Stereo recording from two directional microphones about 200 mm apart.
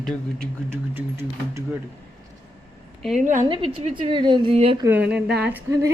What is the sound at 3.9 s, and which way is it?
Speech, 25° right (ahead or behind).